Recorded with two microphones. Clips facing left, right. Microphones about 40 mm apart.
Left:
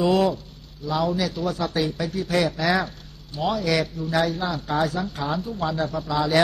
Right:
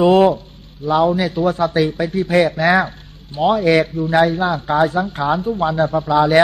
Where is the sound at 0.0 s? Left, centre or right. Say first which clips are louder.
Right 8 dB; right.